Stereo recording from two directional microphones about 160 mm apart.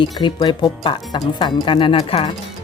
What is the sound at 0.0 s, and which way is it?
Speech, 30° left (ahead or behind).